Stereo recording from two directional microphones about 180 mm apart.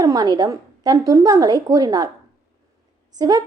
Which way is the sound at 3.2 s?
20° right (ahead or behind).